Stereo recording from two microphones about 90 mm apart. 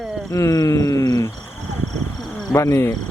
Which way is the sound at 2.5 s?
35° left (ahead or behind).